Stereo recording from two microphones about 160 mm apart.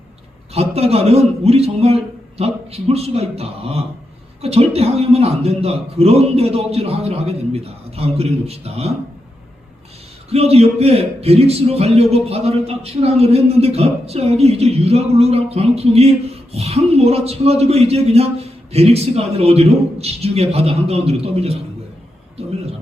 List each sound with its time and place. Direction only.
0.5 s a man's voice: 40° right (ahead or behind)
10.2 s a man's voice: 40° right (ahead or behind)